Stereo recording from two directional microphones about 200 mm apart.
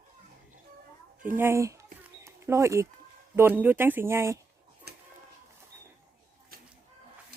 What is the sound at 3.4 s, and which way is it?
Speech, 10° right (ahead or behind).